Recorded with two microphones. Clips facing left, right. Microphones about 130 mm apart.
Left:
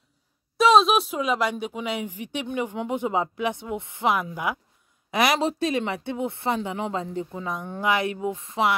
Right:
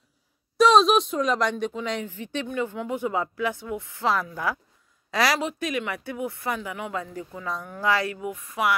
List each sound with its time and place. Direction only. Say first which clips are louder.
0.6 s a woman's voice: even; centre (ahead or behind); by 5.4 s 20° left (ahead or behind)
5.4 s speech: left 4 dB; 30° left (ahead or behind)